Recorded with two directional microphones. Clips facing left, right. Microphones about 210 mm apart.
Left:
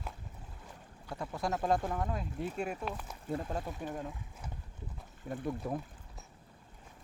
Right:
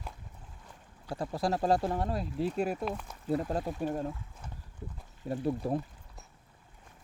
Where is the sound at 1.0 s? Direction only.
35° right (ahead or behind).